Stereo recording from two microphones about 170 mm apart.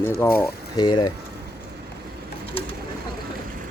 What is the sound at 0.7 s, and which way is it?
Speech, 25° left (ahead or behind).